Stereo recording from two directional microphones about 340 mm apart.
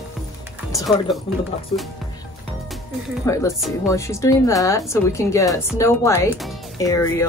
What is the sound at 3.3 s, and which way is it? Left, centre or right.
Speech, centre.